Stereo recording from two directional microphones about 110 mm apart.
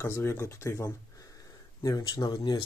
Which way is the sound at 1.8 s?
35° left (ahead or behind).